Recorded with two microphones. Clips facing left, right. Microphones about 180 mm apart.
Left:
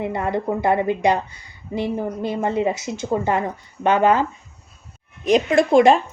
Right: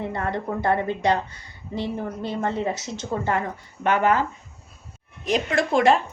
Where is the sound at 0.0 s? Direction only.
15° left (ahead or behind).